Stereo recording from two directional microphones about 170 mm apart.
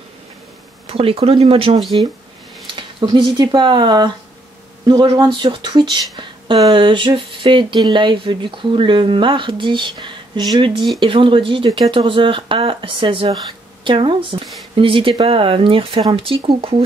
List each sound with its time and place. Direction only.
0.8 s speech: 35° right (ahead or behind)